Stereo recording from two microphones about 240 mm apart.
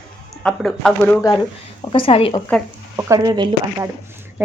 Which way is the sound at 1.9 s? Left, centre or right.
Left.